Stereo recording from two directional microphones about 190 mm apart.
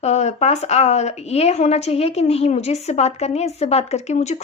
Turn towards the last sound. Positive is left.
turn(degrees=35)  # may be behind; listen again after turning